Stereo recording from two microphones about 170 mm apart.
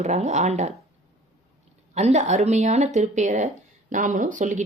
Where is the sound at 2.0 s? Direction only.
40° right (ahead or behind).